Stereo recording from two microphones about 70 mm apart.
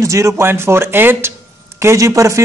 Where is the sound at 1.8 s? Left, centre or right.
Right.